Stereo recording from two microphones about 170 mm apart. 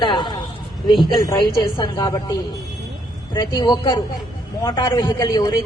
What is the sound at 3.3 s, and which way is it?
A man's voice, 25° left (ahead or behind).